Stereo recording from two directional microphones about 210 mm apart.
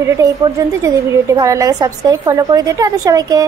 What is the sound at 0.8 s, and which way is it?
A woman's voice, 15° right (ahead or behind).